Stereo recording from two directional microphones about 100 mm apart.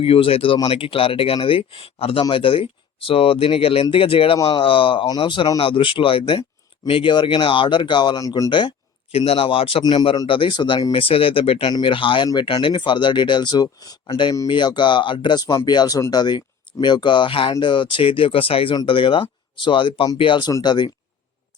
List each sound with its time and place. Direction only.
0.0 s speech: 70° left (ahead or behind); by 8.2 s 50° left (ahead or behind)
8.2 s speech: 35° left (ahead or behind)
8.4 s speech: 50° left (ahead or behind)
9.1 s speech: 75° left (ahead or behind)
9.8 s speech: 45° left (ahead or behind)
10.2 s speech: 60° left (ahead or behind); by 14.0 s 40° left (ahead or behind)
14.1 s speech: 55° left (ahead or behind)